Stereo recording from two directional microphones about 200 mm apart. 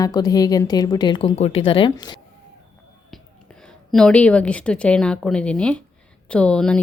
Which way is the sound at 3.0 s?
Centre (ahead or behind).